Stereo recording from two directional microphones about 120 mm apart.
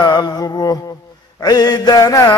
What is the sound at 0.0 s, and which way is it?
Mantra, 35° left (ahead or behind).